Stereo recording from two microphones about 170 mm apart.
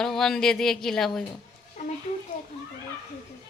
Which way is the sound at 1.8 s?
45° left (ahead or behind).